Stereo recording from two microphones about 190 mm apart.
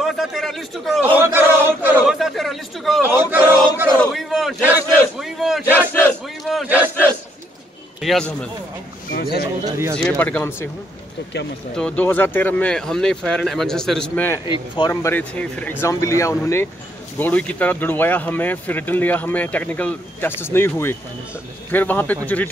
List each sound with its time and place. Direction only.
0.0 s a man's voice: centre (ahead or behind)
1.1 s a sound: 10° right (ahead or behind)
3.0 s a sound: 10° right (ahead or behind)
4.0 s a sound: centre (ahead or behind)
8.0 s a man's voice: centre (ahead or behind)
9.1 s speech: 55° left (ahead or behind)
9.7 s speech: 15° right (ahead or behind)
9.9 s speech: 5° left (ahead or behind)
11.7 s speech: 5° left (ahead or behind)
14.4 s speech: 25° left (ahead or behind)
14.9 s speech: 15° left (ahead or behind)